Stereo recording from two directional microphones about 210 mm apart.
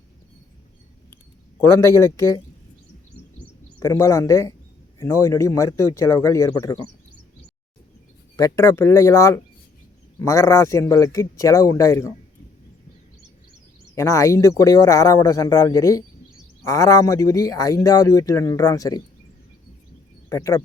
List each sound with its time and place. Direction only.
1.8 s speech: 15° left (ahead or behind)
3.3 s bird: 15° left (ahead or behind)
4.9 s speech: 15° left (ahead or behind)
8.4 s speech: 15° left (ahead or behind)
13.9 s speech: 15° left (ahead or behind)
20.3 s speech: 15° left (ahead or behind)